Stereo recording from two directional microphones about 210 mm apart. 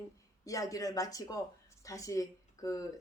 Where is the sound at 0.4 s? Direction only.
15° left (ahead or behind).